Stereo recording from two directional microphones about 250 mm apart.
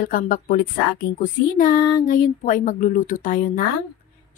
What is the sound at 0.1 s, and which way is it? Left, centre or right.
A woman's voice, left.